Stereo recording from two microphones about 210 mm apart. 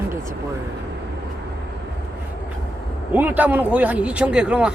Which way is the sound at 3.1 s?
10° right (ahead or behind).